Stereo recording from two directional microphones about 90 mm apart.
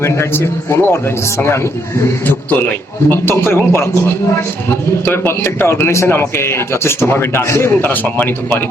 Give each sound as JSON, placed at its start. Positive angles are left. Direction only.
{"t": 0.0, "sound": "a man's voice", "side_deg": 30}
{"t": 2.2, "sound": "a man's voice", "side_deg": 20}
{"t": 5.0, "sound": "a man's voice", "side_deg": 25}